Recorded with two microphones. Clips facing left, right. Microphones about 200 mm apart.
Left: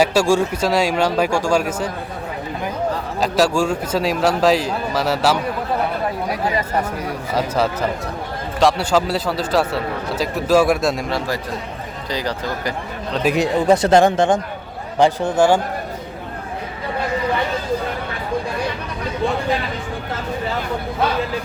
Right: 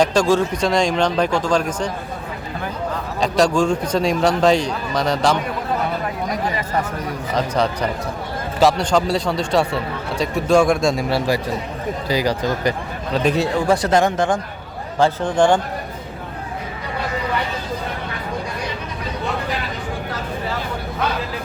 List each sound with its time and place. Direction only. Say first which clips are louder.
0.0 s speech: even; 10° left (ahead or behind)
3.2 s speech: right 1 dB; 5° left (ahead or behind)
7.3 s speech: even; 5° left (ahead or behind)
12.0 s speech: right 4 dB; 10° right (ahead or behind)
13.3 s speech: left 6 dB; 15° left (ahead or behind)
13.8 s speech: left 3 dB; 30° left (ahead or behind)
14.9 s speech: left 1 dB; 10° left (ahead or behind)